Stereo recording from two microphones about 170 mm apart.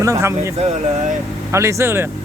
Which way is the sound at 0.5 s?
40° right (ahead or behind).